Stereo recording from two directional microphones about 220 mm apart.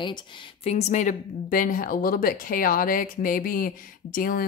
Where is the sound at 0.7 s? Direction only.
30° left (ahead or behind).